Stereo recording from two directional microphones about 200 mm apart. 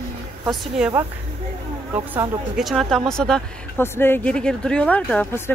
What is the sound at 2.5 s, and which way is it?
Speech, centre (ahead or behind).